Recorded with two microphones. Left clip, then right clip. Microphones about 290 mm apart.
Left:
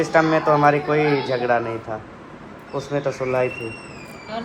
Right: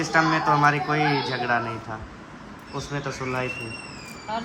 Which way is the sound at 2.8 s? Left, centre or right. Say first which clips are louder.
Left 7 dB; centre.